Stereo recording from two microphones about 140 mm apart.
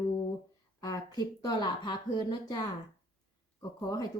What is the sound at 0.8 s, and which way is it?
Speech, 30° left (ahead or behind).